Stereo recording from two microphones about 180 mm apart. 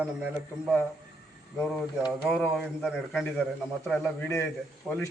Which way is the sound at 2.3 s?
5° left (ahead or behind).